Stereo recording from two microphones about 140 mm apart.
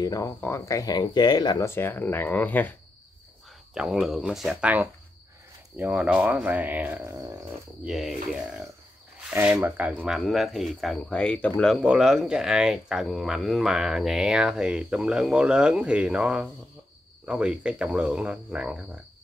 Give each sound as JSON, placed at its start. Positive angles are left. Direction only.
{"t": 0.0, "sound": "speech", "side_deg": 25}
{"t": 1.7, "sound": "speech", "side_deg": 15}
{"t": 3.7, "sound": "speech", "side_deg": -5}
{"t": 7.8, "sound": "speech", "side_deg": 0}
{"t": 9.9, "sound": "speech", "side_deg": 0}
{"t": 11.8, "sound": "speech", "side_deg": -5}